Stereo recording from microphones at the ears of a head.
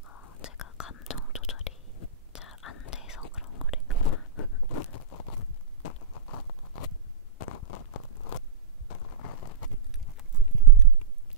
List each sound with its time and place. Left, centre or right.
0.0 s whispering: left